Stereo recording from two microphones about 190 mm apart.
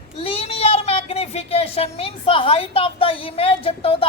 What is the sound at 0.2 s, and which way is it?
Speech, 30° left (ahead or behind).